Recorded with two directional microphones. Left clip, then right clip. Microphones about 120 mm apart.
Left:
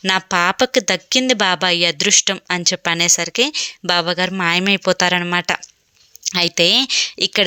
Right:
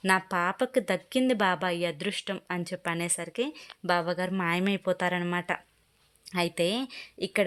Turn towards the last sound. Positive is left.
turn(degrees=20)  # may be behind; listen again after turning